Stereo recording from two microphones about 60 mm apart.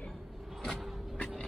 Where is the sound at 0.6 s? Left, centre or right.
Centre.